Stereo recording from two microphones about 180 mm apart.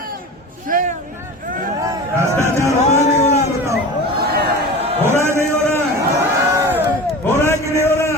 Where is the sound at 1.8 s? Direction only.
15° right (ahead or behind).